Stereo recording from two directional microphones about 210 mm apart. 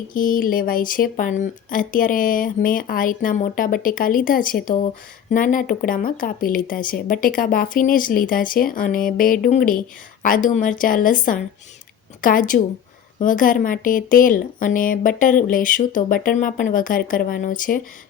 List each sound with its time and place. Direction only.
0.1 s a woman's voice: 40° left (ahead or behind)